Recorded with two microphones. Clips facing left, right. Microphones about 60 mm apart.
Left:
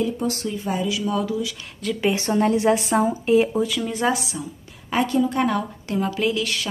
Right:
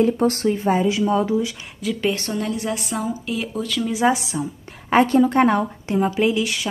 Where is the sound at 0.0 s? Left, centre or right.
Right.